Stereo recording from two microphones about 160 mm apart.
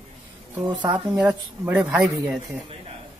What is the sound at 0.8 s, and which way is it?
Speech, 10° right (ahead or behind).